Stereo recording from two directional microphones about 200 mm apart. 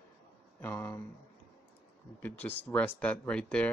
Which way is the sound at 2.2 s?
10° left (ahead or behind).